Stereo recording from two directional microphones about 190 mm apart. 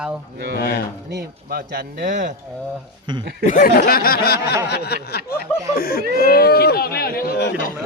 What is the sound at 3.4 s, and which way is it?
Speech, 50° left (ahead or behind).